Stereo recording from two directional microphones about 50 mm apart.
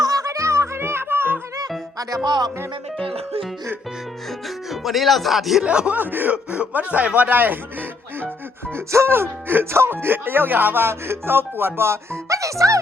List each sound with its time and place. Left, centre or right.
0.2 s music: right
0.8 s music: right
4.3 s speech: centre
5.6 s speech: right
6.0 s speech: right
8.7 s music: right
9.0 s speech: right